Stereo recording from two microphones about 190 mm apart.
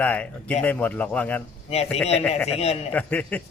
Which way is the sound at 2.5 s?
30° left (ahead or behind).